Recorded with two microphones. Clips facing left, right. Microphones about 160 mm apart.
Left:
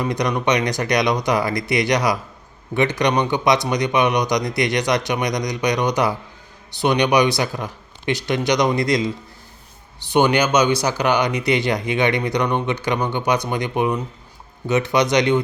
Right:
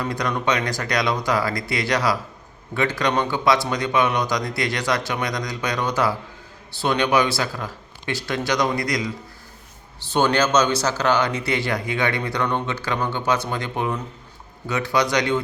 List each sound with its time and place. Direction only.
0.0 s speech: 20° left (ahead or behind)